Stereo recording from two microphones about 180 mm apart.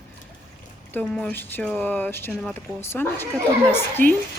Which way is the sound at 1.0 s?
5° left (ahead or behind).